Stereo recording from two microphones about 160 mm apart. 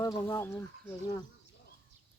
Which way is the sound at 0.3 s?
15° left (ahead or behind).